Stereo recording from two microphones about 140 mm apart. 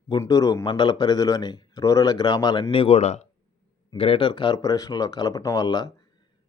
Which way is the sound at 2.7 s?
45° left (ahead or behind).